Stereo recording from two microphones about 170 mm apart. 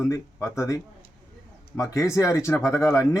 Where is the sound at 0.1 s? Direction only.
15° left (ahead or behind).